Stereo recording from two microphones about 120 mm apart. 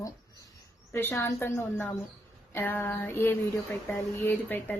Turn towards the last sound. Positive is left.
turn(degrees=15)  # may be behind; listen again after turning